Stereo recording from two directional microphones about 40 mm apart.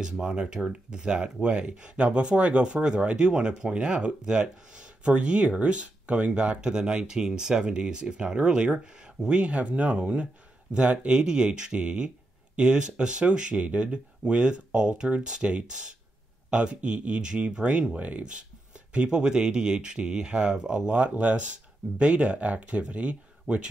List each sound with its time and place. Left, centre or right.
0.0 s speech: right
18.9 s speech: right